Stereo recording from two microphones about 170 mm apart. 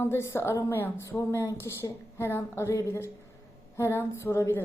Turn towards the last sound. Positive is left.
turn(degrees=15)  # may be behind; listen again after turning